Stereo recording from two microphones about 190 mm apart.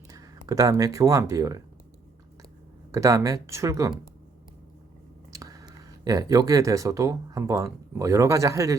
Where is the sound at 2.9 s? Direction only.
15° right (ahead or behind).